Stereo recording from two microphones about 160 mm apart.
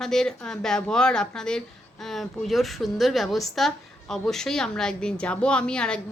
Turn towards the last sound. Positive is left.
turn(degrees=5)  # may be behind; listen again after turning